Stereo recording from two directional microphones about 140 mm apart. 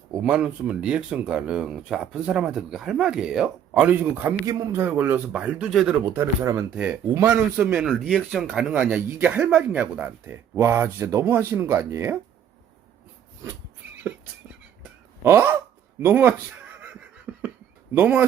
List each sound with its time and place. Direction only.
0.1 s speech: 10° right (ahead or behind)
6.1 s speech: 20° right (ahead or behind)
7.1 s speech: 20° right (ahead or behind)
7.5 s speech: 10° right (ahead or behind)
15.2 s speech: 15° right (ahead or behind)
17.3 s a sound: 10° right (ahead or behind)
17.9 s speech: 10° right (ahead or behind)